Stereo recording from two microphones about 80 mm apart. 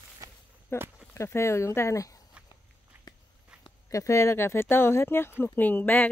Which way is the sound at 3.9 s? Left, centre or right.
Left.